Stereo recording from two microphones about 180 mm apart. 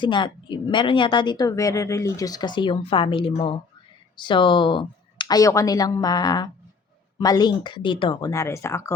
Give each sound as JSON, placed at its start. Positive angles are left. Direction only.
{"t": 0.0, "sound": "a woman's voice", "side_deg": 25}
{"t": 8.3, "sound": "speech", "side_deg": 15}